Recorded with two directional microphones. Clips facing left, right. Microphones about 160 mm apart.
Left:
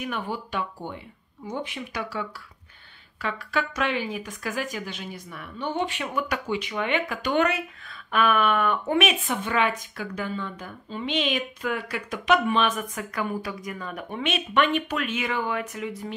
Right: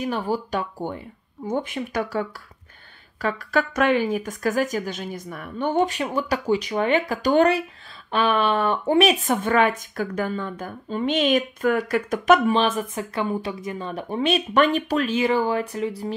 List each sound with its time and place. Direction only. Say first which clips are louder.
0.0 s speech: right 6 dB; 35° right (ahead or behind)
12.5 s speech: right 3 dB; 30° right (ahead or behind)